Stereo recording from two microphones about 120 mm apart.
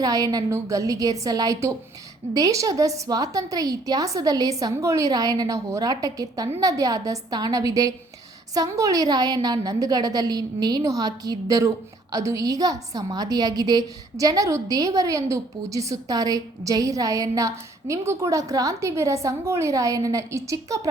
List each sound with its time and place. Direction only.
0.0 s a woman's voice: 30° right (ahead or behind)